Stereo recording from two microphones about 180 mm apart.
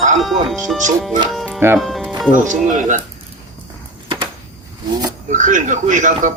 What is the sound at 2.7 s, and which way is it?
Speech, 45° right (ahead or behind).